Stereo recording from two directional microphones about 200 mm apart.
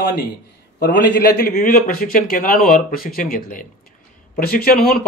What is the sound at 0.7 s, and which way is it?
A man's voice, 50° left (ahead or behind).